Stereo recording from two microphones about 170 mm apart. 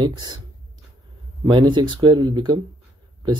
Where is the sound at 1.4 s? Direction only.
25° right (ahead or behind).